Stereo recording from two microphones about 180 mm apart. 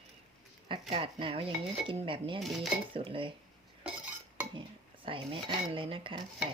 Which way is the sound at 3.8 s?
10° right (ahead or behind).